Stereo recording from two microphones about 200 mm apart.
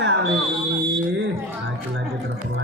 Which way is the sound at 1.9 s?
80° right.